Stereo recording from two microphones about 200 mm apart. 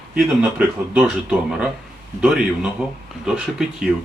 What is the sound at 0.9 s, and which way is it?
Speech, 5° right (ahead or behind).